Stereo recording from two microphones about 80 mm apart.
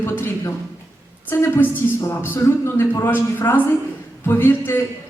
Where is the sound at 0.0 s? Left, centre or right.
Left.